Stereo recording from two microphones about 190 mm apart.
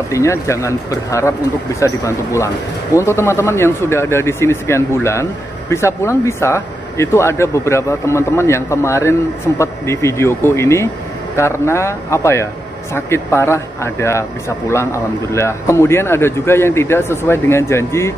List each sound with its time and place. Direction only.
0.1 s speech: 15° left (ahead or behind)